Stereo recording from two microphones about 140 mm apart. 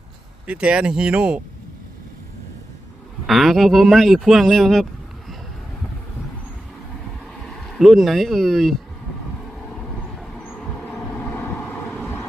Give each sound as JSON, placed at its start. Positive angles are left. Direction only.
{"t": 0.4, "sound": "speech", "side_deg": -10}
{"t": 3.2, "sound": "speech", "side_deg": 0}
{"t": 7.4, "sound": "speech", "side_deg": 5}
{"t": 10.2, "sound": "vehicle", "side_deg": 0}